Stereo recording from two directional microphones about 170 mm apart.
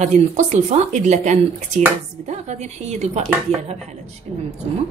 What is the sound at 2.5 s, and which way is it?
Speech, 40° right (ahead or behind).